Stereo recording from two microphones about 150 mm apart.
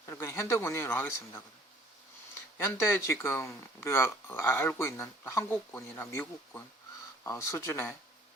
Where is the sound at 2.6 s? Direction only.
20° left (ahead or behind).